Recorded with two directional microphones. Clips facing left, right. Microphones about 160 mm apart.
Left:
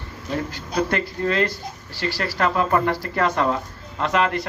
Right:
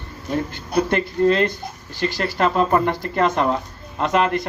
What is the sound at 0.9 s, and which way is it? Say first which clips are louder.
Speech: right 6 dB; 20° right (ahead or behind).